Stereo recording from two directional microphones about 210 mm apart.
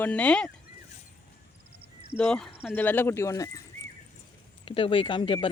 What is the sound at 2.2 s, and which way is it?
Speech, 5° left (ahead or behind).